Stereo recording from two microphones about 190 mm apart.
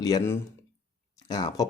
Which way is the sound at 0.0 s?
15° left (ahead or behind).